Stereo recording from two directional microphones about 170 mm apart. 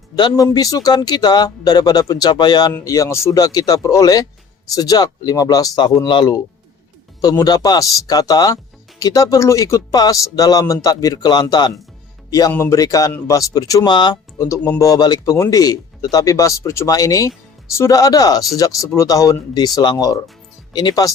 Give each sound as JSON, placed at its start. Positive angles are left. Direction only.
{"t": 0.2, "sound": "speech", "side_deg": 25}